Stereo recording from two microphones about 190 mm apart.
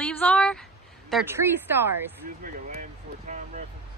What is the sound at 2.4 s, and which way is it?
Speech, 45° right (ahead or behind).